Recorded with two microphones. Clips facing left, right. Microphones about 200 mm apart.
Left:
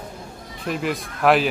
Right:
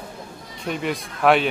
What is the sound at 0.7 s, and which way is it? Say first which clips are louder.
Speech: left 1 dB; centre (ahead or behind).